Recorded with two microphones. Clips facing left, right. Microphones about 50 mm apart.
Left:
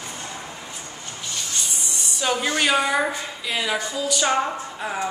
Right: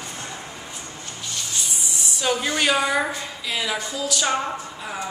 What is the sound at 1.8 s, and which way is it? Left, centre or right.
A woman's voice, centre.